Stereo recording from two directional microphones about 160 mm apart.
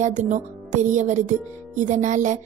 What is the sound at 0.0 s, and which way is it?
Speech, 50° right (ahead or behind).